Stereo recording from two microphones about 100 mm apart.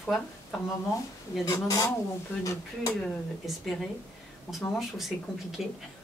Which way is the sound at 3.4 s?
Centre (ahead or behind).